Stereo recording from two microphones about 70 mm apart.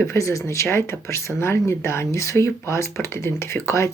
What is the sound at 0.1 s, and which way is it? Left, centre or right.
Speech, left.